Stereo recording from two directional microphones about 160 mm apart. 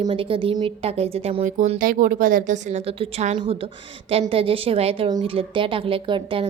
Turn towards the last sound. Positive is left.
turn(degrees=-30)  # may be behind; listen again after turning